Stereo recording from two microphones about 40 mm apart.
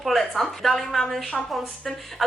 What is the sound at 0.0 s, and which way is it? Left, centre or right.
A woman's voice, centre.